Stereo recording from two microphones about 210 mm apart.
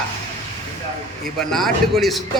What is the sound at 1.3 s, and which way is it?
Speech, centre (ahead or behind).